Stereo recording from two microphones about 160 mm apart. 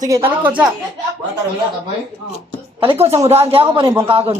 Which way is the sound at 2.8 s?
40° right (ahead or behind).